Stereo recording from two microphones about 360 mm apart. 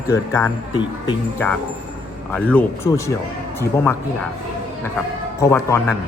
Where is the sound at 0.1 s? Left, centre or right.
Centre.